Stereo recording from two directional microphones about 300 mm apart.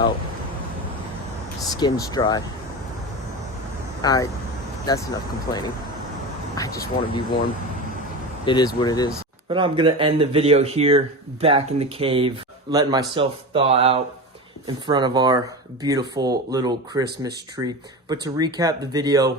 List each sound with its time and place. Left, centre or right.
1.8 s speech: centre
4.0 s speech: centre
6.6 s speech: centre
9.5 s speech: centre